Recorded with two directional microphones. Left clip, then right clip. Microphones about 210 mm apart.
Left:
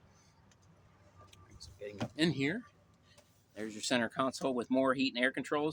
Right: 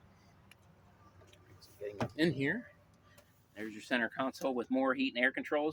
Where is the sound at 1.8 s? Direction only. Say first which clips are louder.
Right 1 dB; 10° left (ahead or behind).